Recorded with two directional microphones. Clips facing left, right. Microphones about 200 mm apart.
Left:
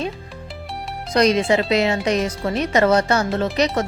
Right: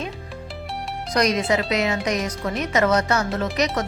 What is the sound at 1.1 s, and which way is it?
Speech, 30° left (ahead or behind).